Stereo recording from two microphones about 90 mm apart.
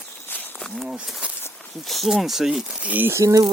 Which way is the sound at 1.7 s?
Centre (ahead or behind).